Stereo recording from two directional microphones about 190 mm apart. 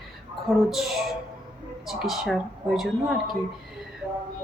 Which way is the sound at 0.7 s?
Centre (ahead or behind).